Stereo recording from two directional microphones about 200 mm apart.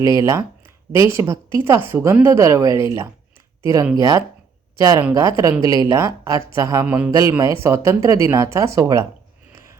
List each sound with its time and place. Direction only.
0.0 s speech: 15° right (ahead or behind)